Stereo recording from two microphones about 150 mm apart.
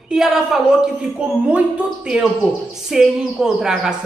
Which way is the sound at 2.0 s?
5° right (ahead or behind).